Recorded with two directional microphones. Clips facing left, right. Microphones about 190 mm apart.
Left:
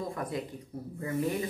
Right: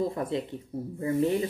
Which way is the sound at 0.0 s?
25° right (ahead or behind).